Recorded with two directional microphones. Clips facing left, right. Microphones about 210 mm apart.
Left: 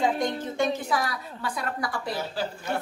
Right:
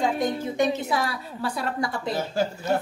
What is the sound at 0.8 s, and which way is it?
A woman's voice, 25° right (ahead or behind).